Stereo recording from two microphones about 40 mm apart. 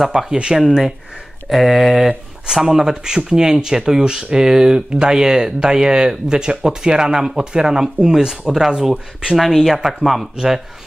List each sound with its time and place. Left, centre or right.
0.0 s speech: centre
1.5 s speech: centre
9.4 s speech: centre